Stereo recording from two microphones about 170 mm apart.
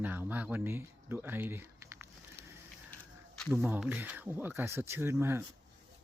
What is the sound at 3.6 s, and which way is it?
Speech, 10° right (ahead or behind).